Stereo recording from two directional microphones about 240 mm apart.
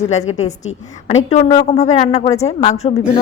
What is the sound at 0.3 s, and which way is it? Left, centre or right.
Speech, left.